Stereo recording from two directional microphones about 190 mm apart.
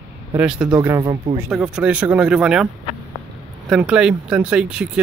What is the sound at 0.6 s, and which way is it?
Speech, 20° right (ahead or behind).